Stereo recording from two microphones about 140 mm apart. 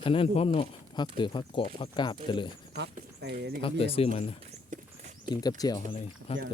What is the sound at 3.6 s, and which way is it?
Speech, 40° left (ahead or behind).